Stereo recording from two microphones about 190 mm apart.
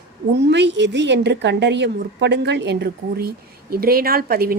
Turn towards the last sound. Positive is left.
turn(degrees=-50)  # may be behind; listen again after turning